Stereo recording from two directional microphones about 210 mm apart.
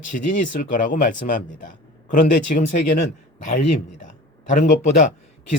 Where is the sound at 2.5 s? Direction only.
40° left (ahead or behind).